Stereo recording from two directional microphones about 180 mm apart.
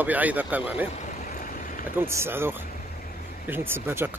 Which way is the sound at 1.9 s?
15° right (ahead or behind).